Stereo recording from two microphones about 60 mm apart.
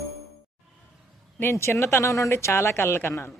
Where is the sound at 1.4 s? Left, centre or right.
Left.